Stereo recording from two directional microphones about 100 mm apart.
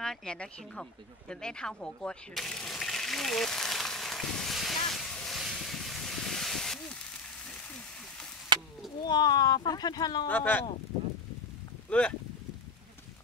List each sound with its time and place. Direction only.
0.0 s speech: 5° left (ahead or behind)
4.8 s vehicle: 5° left (ahead or behind)
8.5 s a sound: 50° right (ahead or behind)
9.0 s speech: 45° left (ahead or behind)
10.2 s speech: 15° left (ahead or behind)
11.9 s speech: 10° left (ahead or behind)